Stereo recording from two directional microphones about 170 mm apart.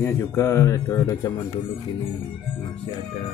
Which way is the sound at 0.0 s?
20° left (ahead or behind).